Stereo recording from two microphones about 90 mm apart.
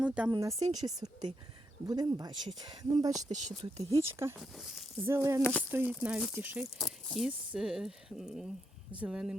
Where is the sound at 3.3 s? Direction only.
90° right.